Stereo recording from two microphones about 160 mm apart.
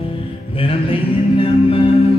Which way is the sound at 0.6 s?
35° left (ahead or behind).